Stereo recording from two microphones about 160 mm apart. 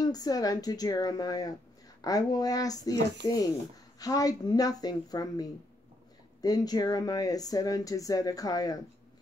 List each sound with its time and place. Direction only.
0.0 s speech: 25° left (ahead or behind)